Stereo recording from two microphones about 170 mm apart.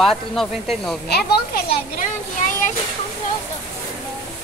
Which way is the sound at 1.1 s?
70° left (ahead or behind).